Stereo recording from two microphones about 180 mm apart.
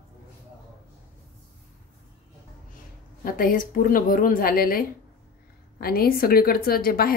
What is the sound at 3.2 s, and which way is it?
A woman's voice, 50° left (ahead or behind).